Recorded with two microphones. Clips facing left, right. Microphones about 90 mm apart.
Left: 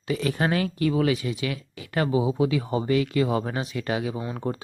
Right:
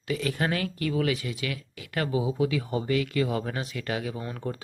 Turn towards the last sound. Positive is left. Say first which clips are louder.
# left 4 dB
turn(degrees=20)  # may be behind; listen again after turning